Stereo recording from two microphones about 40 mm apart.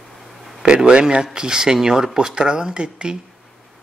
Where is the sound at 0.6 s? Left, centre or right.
Right.